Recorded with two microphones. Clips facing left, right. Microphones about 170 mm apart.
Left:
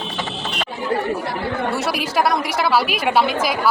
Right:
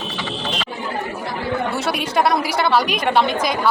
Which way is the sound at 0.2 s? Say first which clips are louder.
Right 1 dB; 50° left (ahead or behind).